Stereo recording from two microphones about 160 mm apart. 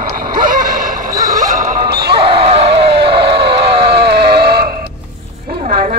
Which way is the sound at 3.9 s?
90° right.